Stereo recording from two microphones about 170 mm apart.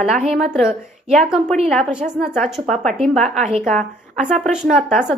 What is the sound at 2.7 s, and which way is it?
Speech, 45° right (ahead or behind).